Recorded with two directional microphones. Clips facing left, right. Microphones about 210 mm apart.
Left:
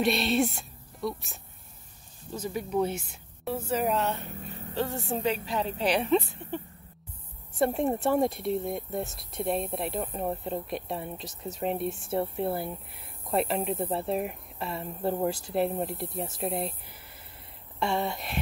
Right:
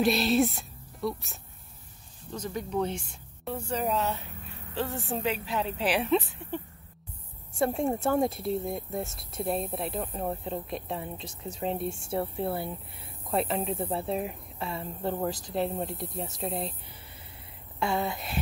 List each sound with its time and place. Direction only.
0.0 s speech: centre (ahead or behind)
4.3 s speech: 40° left (ahead or behind)
4.7 s speech: centre (ahead or behind)
7.5 s speech: centre (ahead or behind)
17.7 s speech: centre (ahead or behind)